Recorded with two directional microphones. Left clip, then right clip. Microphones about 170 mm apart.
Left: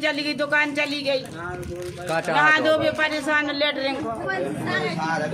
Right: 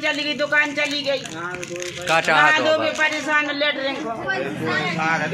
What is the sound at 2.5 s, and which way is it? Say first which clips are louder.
A man's voice: right 1 dB; 30° left (ahead or behind).